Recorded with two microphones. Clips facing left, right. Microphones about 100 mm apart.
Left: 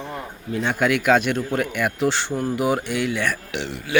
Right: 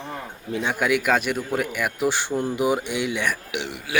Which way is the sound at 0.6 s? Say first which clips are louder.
Left 2 dB; 10° right (ahead or behind).